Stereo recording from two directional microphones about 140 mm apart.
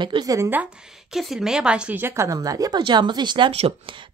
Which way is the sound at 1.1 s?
Centre (ahead or behind).